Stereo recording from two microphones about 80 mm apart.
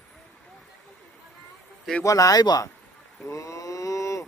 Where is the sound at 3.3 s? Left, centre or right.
Left.